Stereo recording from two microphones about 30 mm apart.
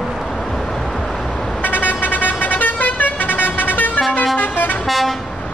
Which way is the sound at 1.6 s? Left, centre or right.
Left.